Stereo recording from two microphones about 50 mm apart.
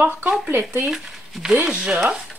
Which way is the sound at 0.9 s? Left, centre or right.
Centre.